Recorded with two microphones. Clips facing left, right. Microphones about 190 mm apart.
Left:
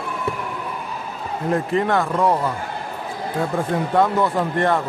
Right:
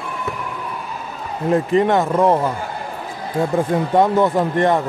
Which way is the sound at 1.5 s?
20° right (ahead or behind).